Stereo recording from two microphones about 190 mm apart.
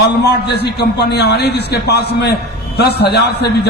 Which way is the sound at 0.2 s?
60° left (ahead or behind).